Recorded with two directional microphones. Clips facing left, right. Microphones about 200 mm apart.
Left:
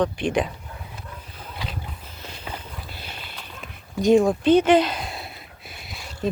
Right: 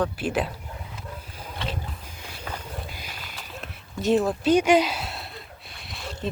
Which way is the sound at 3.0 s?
Centre (ahead or behind).